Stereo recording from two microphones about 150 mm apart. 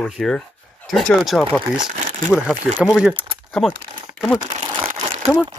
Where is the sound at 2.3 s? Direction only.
10° right (ahead or behind).